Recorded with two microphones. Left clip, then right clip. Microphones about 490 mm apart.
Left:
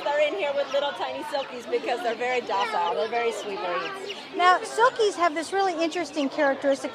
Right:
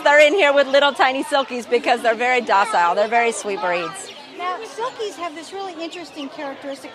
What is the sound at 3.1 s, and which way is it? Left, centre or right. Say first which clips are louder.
Speech: right 8 dB; right.